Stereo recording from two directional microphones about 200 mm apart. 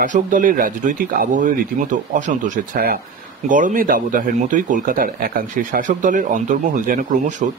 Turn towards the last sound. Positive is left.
turn(degrees=-40)  # may be behind; listen again after turning